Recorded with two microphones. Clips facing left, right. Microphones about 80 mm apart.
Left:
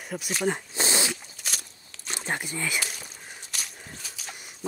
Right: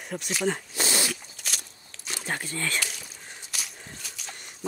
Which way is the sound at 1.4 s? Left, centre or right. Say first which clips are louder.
Even; centre.